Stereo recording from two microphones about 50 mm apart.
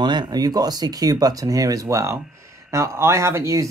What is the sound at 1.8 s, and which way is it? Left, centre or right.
Speech, right.